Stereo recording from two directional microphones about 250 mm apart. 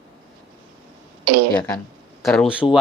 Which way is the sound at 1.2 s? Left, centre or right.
Right.